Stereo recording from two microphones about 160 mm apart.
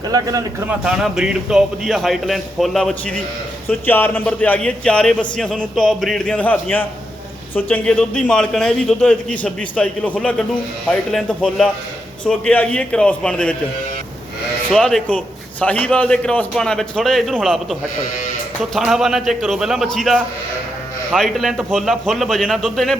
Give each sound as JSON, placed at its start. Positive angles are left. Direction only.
{"t": 0.1, "sound": "speech", "side_deg": -25}
{"t": 0.7, "sound": "a man's voice", "side_deg": -5}
{"t": 3.7, "sound": "a man's voice", "side_deg": 10}
{"t": 14.7, "sound": "a man's voice", "side_deg": 5}